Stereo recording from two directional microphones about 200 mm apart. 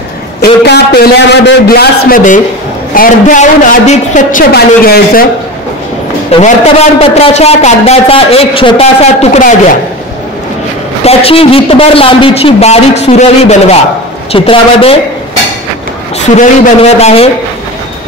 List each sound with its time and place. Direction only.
0.4 s a woman's voice: 50° left (ahead or behind)
6.3 s a man's voice: 30° left (ahead or behind)
11.1 s a man's voice: 30° left (ahead or behind)
16.3 s a man's voice: 30° left (ahead or behind)